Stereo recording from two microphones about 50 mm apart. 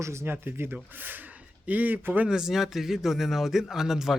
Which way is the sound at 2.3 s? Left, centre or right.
Centre.